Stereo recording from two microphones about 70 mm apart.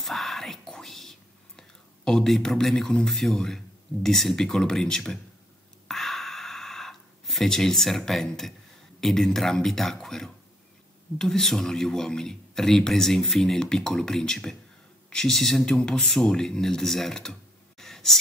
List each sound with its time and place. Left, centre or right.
0.0 s whispering: centre
1.6 s speech: centre
5.9 s a sound: centre
9.0 s speech: centre